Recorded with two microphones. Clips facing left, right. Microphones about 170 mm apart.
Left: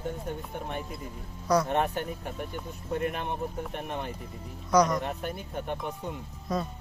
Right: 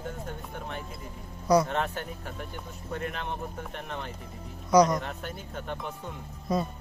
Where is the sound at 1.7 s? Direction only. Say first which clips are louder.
Left 3 dB; 15° left (ahead or behind).